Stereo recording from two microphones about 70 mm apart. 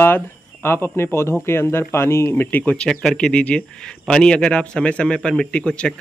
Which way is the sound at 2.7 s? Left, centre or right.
Centre.